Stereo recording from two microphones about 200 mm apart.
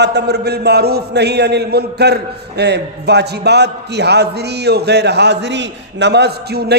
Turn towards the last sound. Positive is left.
turn(degrees=-55)  # may be behind; listen again after turning